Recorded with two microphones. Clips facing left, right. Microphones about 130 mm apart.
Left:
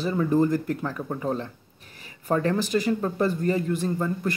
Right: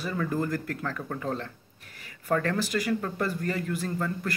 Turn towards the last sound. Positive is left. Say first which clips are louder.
# left 4 dB
turn(degrees=20)  # may be behind; listen again after turning